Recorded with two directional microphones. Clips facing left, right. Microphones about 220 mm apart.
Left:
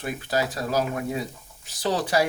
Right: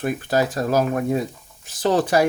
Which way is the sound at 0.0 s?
50° right (ahead or behind).